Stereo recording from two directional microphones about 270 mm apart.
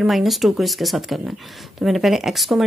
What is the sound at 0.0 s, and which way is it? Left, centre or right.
A woman's voice, centre.